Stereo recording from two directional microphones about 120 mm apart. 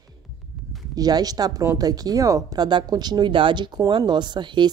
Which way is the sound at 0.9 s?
30° right (ahead or behind).